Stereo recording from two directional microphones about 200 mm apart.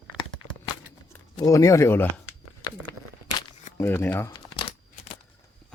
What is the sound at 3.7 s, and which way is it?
Speech, 10° left (ahead or behind).